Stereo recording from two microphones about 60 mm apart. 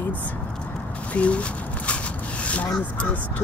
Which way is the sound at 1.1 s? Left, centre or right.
Left.